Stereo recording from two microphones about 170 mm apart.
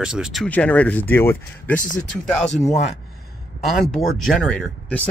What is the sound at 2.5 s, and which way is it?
Speech, 40° left (ahead or behind).